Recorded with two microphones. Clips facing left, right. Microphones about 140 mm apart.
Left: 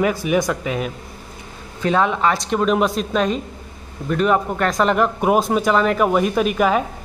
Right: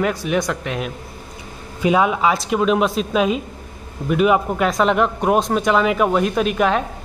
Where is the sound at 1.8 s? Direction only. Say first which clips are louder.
Right 1 dB; 10° right (ahead or behind).